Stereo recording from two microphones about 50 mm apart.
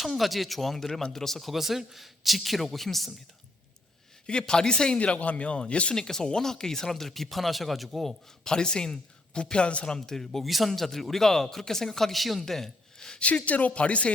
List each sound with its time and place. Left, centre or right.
0.0 s speech: centre
4.3 s a man's voice: centre
4.9 s speech: left
5.9 s speech: centre
8.4 s a man's voice: centre
13.2 s speech: left